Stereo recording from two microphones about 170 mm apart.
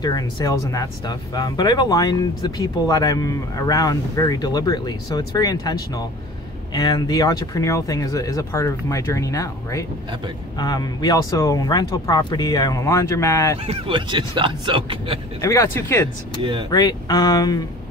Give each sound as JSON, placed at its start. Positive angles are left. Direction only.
{"t": 0.0, "sound": "speech", "side_deg": 20}
{"t": 13.7, "sound": "speech", "side_deg": -30}
{"t": 15.4, "sound": "speech", "side_deg": 20}